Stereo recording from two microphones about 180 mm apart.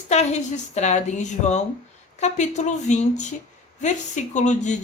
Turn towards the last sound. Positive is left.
turn(degrees=40)  # may be behind; listen again after turning